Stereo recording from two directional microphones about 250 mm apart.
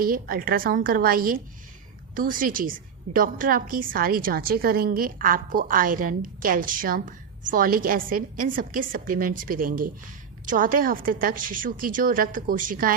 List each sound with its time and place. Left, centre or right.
0.0 s a woman's voice: right